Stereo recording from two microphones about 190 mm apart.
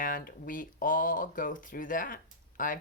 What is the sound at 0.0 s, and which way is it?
Speech, 50° left (ahead or behind).